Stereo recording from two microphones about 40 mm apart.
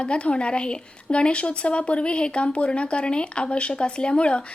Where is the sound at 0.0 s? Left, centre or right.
Left.